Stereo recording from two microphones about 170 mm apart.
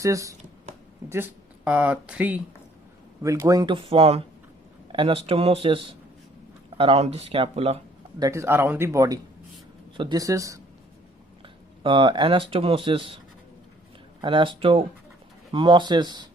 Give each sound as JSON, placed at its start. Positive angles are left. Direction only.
{"t": 0.0, "sound": "speech", "side_deg": -20}
{"t": 3.2, "sound": "speech", "side_deg": -20}
{"t": 6.7, "sound": "speech", "side_deg": -35}
{"t": 8.2, "sound": "speech", "side_deg": -15}
{"t": 11.4, "sound": "a sound", "side_deg": -30}
{"t": 12.5, "sound": "speech", "side_deg": -35}
{"t": 14.2, "sound": "speech", "side_deg": -30}